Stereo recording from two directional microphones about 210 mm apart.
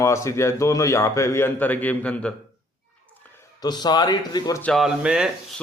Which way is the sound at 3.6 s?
20° left (ahead or behind).